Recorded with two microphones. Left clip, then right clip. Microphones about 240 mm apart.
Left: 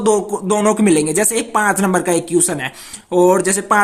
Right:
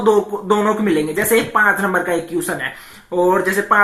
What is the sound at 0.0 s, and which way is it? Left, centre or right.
Speech, left.